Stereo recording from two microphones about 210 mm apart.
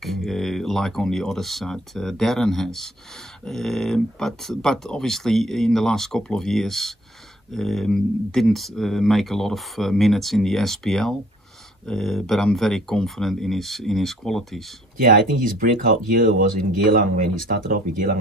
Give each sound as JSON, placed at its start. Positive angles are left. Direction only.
{"t": 0.0, "sound": "speech", "side_deg": 0}
{"t": 15.0, "sound": "speech", "side_deg": -40}